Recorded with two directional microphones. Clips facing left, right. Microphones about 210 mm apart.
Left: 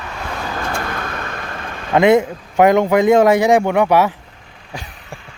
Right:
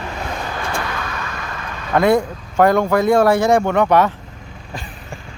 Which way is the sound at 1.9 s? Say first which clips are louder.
Left 3 dB; 20° left (ahead or behind).